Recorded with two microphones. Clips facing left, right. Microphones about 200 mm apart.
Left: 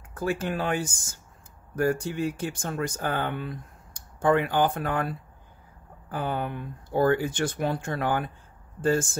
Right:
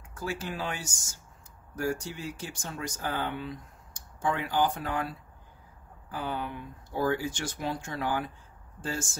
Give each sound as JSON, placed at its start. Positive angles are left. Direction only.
{"t": 0.1, "sound": "speech", "side_deg": 55}